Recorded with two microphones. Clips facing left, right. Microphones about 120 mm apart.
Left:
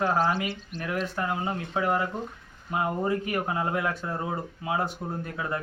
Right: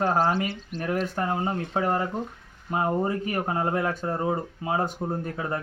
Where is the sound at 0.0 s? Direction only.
35° right (ahead or behind).